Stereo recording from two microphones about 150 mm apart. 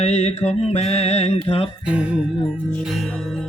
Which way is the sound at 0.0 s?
45° left (ahead or behind).